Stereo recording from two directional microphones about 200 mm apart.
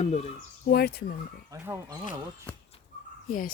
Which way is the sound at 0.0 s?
35° left (ahead or behind).